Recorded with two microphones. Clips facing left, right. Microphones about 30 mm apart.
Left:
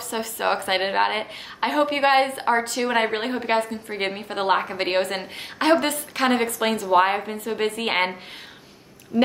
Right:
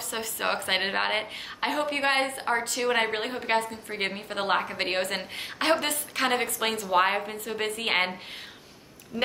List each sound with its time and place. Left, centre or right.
0.1 s a woman's voice: centre
9.1 s quack: left